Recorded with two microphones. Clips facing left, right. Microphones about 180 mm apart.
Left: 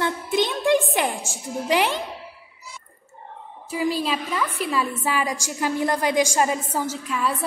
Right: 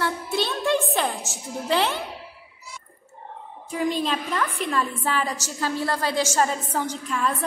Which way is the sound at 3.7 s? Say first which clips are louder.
Left 1 dB; 5° left (ahead or behind).